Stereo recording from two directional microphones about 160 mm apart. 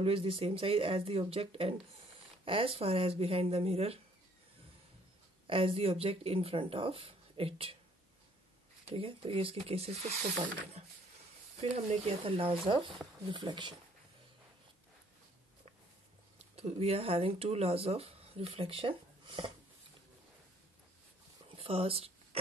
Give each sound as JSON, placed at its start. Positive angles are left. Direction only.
{"t": 0.0, "sound": "speech", "side_deg": -35}
{"t": 5.5, "sound": "speech", "side_deg": -35}
{"t": 8.9, "sound": "speech", "side_deg": -35}
{"t": 11.5, "sound": "speech", "side_deg": -40}
{"t": 16.5, "sound": "speech", "side_deg": -40}
{"t": 21.5, "sound": "a sound", "side_deg": -35}